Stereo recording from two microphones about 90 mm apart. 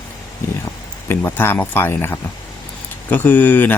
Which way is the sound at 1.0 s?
25° left (ahead or behind).